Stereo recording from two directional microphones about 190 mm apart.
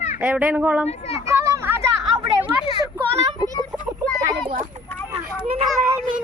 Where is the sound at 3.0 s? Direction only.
15° right (ahead or behind).